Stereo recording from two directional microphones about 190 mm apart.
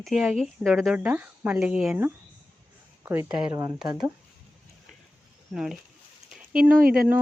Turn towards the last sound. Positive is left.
turn(degrees=-50)  # may be behind; listen again after turning